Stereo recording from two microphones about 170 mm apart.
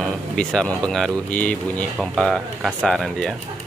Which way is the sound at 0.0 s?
5° left (ahead or behind).